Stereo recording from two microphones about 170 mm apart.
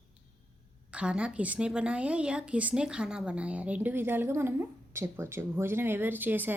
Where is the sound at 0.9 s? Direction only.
5° right (ahead or behind).